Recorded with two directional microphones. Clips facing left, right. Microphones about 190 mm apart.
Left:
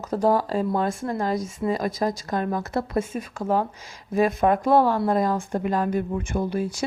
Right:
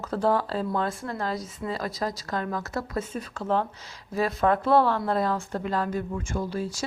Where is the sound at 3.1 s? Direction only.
10° left (ahead or behind).